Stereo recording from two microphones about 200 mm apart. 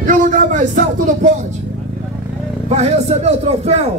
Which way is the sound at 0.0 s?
40° right (ahead or behind).